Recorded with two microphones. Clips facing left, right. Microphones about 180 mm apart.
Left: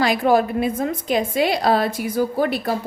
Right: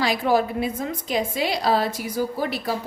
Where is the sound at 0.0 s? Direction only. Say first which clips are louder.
Left 4 dB; 55° left (ahead or behind).